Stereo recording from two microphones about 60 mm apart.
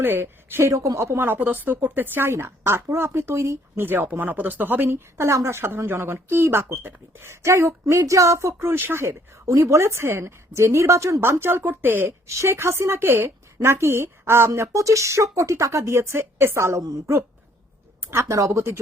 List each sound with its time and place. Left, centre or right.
0.0 s speech: right
0.6 s a woman's voice: right
0.9 s speech: right
1.3 s speech: right
2.3 s speech: right
3.8 s speech: right
9.5 s a woman's voice: right
11.2 s speech: right
12.3 s speech: right
18.0 s speech: right